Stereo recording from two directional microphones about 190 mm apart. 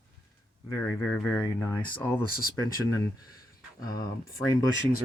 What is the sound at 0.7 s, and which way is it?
Speech, 20° left (ahead or behind).